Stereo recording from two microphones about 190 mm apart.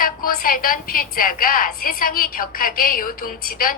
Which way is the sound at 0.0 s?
50° left (ahead or behind).